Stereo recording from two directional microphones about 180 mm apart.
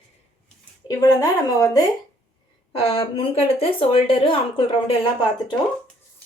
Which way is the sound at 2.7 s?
30° left (ahead or behind).